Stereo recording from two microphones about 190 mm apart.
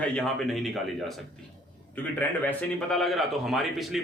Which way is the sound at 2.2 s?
5° left (ahead or behind).